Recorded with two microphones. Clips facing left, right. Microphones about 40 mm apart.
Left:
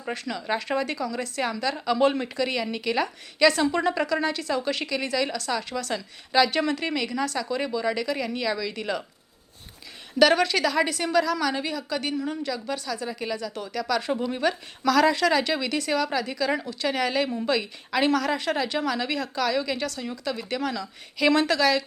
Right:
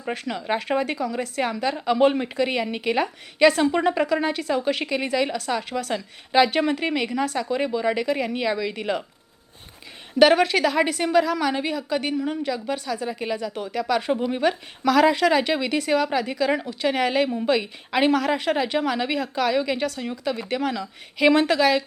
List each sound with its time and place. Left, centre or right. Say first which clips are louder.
0.3 s a woman's voice: right 3 dB; right
10.2 s a woman's voice: right 3 dB; right